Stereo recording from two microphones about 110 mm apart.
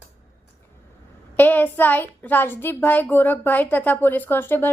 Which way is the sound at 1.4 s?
15° left (ahead or behind).